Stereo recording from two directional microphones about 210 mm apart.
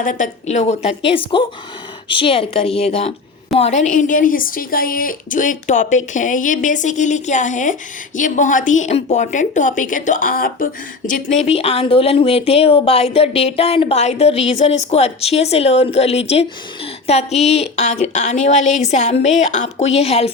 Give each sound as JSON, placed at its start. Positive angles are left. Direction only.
{"t": 0.0, "sound": "a woman's voice", "side_deg": 35}